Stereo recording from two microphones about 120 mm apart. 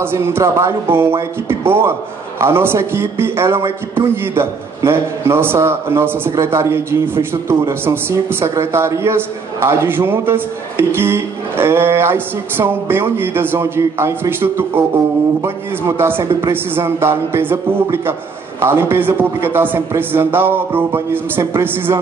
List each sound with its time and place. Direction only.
0.0 s a man's voice: 20° right (ahead or behind)